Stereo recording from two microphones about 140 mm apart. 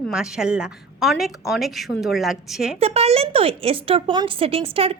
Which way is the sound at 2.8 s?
45° right (ahead or behind).